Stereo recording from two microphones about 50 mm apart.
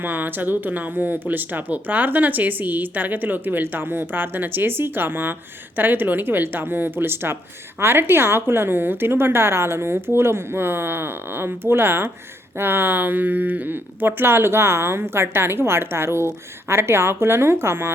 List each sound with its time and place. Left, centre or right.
0.0 s speech: right